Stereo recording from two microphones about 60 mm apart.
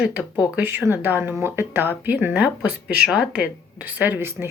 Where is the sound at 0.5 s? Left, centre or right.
Right.